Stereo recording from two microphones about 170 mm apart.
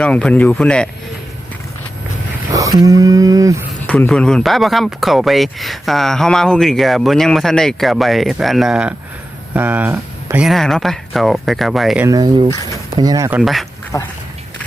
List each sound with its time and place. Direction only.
0.0 s speech: 5° left (ahead or behind)
2.5 s a sound: 20° right (ahead or behind)
3.8 s speech: 5° left (ahead or behind)
12.0 s a sound: 20° right (ahead or behind)
13.4 s speech: centre (ahead or behind)
13.9 s speech: 20° left (ahead or behind)